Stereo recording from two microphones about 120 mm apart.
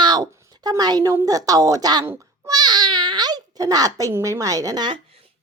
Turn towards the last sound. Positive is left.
turn(degrees=-35)  # may be behind; listen again after turning